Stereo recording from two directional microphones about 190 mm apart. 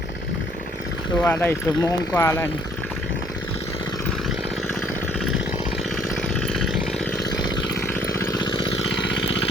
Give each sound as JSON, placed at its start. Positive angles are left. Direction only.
{"t": 1.2, "sound": "speech", "side_deg": 10}
{"t": 6.3, "sound": "chainsaw", "side_deg": 5}
{"t": 7.2, "sound": "chainsaw", "side_deg": 20}
{"t": 9.0, "sound": "vehicle", "side_deg": 70}